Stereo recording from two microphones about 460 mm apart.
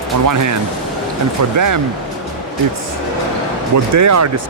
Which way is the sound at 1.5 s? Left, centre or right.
Right.